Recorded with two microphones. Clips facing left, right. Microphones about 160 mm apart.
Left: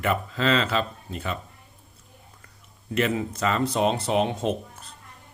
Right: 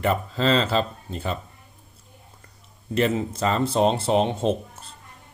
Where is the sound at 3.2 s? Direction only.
30° right (ahead or behind).